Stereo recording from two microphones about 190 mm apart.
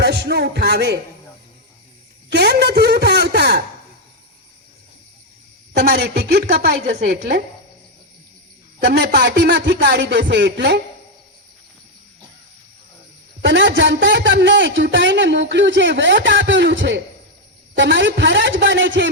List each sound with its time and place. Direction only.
0.0 s music: 60° right (ahead or behind)
2.3 s a man's voice: 60° right (ahead or behind)
5.9 s a man's voice: 60° right (ahead or behind)
8.8 s a man's voice: 60° right (ahead or behind)
13.4 s a man's voice: 70° right (ahead or behind)